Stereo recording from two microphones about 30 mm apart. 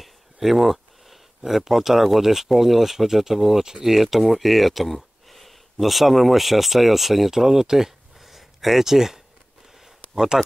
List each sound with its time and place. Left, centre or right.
0.0 s speech: centre
10.1 s speech: right